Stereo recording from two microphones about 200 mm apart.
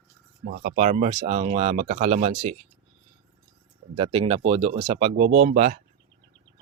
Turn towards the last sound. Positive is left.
turn(degrees=-40)  # may be behind; listen again after turning